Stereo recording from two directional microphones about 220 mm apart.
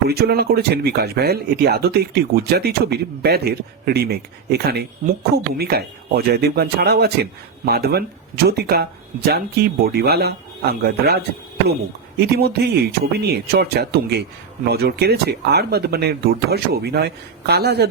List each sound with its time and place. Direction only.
0.1 s speech: 45° right (ahead or behind)